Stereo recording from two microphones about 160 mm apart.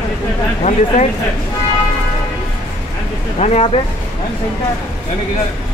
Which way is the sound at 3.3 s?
40° left (ahead or behind).